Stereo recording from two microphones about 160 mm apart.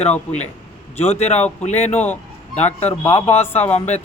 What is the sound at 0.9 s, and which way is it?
Speech, 45° left (ahead or behind).